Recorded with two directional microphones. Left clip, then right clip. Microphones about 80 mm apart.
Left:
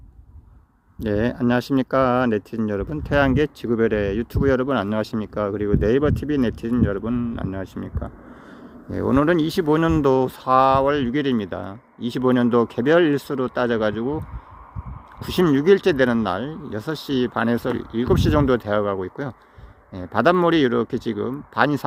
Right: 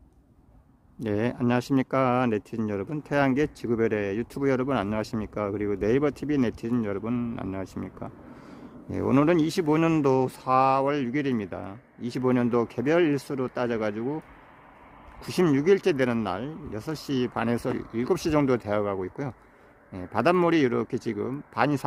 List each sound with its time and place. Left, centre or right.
0.9 s speech: left
7.1 s speech: centre
8.9 s speech: centre
10.0 s speech: left
15.2 s speech: left